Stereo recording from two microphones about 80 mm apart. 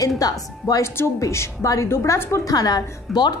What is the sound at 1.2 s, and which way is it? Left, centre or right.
A woman's voice, left.